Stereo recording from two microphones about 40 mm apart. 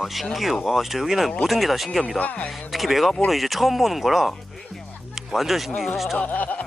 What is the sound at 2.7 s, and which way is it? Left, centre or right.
Speech, centre.